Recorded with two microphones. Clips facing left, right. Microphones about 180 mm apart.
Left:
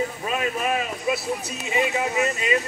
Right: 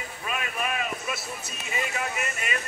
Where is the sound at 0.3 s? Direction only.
30° left (ahead or behind).